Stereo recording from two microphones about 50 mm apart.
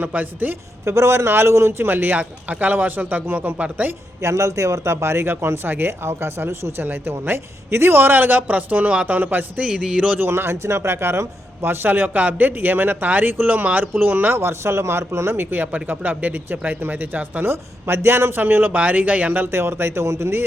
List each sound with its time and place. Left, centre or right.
0.0 s a man's voice: right
0.9 s a man's voice: right
1.9 s a man's voice: right
2.1 s a man's voice: right
4.2 s a man's voice: right
6.8 s a man's voice: right
9.6 s a man's voice: centre
10.2 s a man's voice: right
14.3 s a man's voice: right
15.4 s a man's voice: right
17.5 s a man's voice: right
19.4 s a man's voice: right